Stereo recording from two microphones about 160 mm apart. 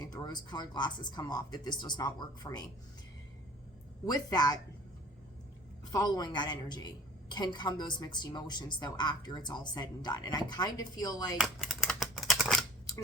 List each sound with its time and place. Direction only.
0.0 s a woman's voice: 25° left (ahead or behind)
4.0 s a woman's voice: 25° left (ahead or behind)
5.9 s a woman's voice: 25° left (ahead or behind)
11.3 s typewriter: centre (ahead or behind)